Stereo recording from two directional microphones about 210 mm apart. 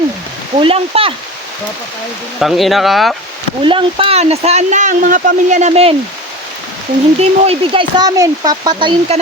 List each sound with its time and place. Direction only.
0.6 s speech: 25° right (ahead or behind)
2.4 s speech: centre (ahead or behind)
3.6 s speech: 25° right (ahead or behind)
7.2 s speech: 25° right (ahead or behind)